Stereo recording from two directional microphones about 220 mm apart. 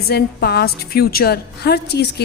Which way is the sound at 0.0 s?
45° left (ahead or behind).